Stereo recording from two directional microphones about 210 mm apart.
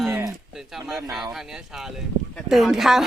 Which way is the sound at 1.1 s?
Centre (ahead or behind).